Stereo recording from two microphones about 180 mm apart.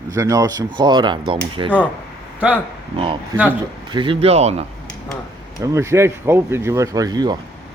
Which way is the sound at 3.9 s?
25° right (ahead or behind).